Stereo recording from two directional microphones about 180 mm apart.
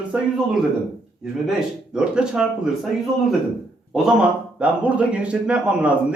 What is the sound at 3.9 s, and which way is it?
Speech, 5° right (ahead or behind).